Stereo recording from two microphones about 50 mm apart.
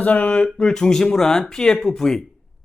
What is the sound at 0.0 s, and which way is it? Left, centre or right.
Speech, left.